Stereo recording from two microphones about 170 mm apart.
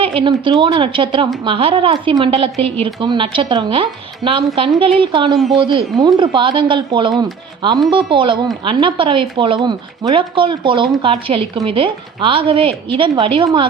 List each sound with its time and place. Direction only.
0.0 s a woman's voice: 30° right (ahead or behind)